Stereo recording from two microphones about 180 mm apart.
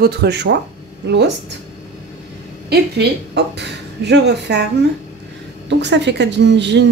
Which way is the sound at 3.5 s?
70° right (ahead or behind).